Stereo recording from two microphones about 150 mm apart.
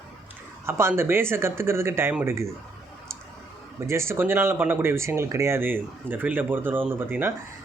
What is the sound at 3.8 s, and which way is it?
Speech, 20° right (ahead or behind).